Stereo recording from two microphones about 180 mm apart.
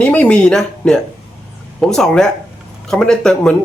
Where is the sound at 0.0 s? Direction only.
10° left (ahead or behind).